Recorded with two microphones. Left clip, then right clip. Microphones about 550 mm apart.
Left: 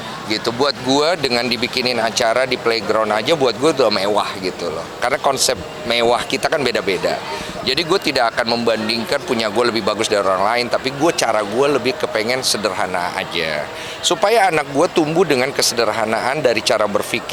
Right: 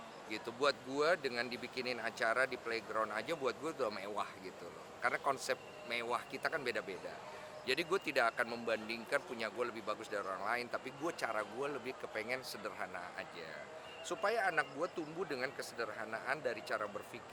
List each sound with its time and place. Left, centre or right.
0.3 s speech: left
7.7 s speech: left